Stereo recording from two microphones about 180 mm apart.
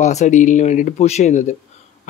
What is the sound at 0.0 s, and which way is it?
A man's voice, 40° left (ahead or behind).